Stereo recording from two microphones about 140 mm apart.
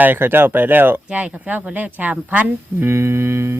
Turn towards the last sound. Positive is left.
turn(degrees=-20)  # may be behind; listen again after turning